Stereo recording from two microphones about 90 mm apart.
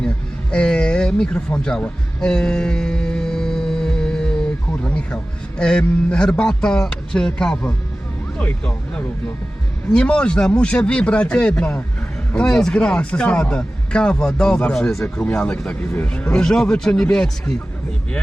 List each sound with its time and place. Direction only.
0.5 s speech: 10° left (ahead or behind)
2.2 s mantra: 10° left (ahead or behind)
4.7 s a sound: 15° left (ahead or behind)
5.5 s speech: 10° left (ahead or behind)